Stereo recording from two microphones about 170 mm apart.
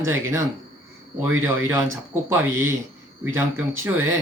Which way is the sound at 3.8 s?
10° right (ahead or behind).